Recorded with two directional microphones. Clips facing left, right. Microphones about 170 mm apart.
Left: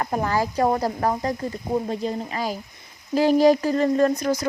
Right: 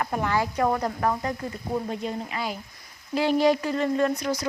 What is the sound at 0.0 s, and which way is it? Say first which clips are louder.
Speech: left 2 dB; 35° left (ahead or behind).